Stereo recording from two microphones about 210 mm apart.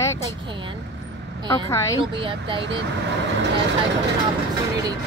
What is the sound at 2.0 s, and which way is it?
Speech, 25° right (ahead or behind).